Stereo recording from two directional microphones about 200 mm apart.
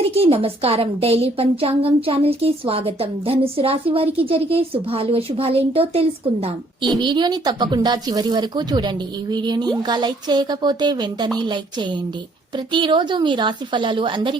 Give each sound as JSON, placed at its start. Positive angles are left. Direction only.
{"t": 0.1, "sound": "a woman's voice", "side_deg": -30}